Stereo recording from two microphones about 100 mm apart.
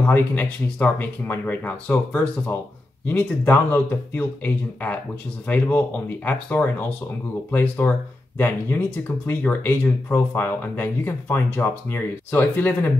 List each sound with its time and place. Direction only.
0.0 s speech: 20° left (ahead or behind)